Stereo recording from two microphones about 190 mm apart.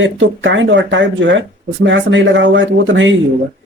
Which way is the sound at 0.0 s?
85° right.